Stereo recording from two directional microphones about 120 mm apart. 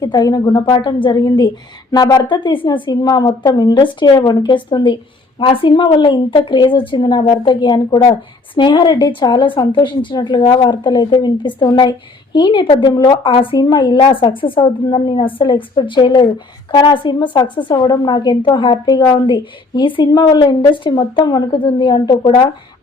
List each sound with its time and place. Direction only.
0.0 s a woman's voice: 35° left (ahead or behind)